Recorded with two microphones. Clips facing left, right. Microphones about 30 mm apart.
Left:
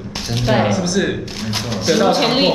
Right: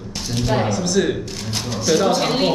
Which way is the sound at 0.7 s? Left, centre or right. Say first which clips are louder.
Left 1 dB; centre.